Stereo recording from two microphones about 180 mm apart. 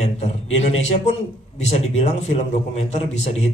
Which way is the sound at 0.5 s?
40° left (ahead or behind).